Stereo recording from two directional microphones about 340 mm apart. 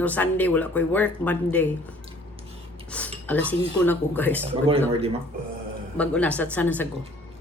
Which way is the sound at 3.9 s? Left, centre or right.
Centre.